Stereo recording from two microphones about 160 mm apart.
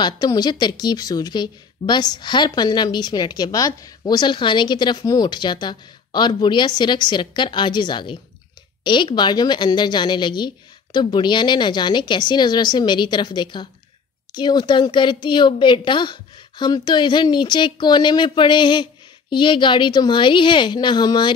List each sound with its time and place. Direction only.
0.0 s speech: 25° left (ahead or behind)